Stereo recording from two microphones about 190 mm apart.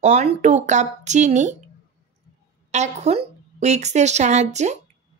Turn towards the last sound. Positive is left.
turn(degrees=-35)  # may be behind; listen again after turning